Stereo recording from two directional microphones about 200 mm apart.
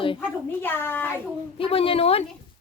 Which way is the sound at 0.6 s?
10° left (ahead or behind).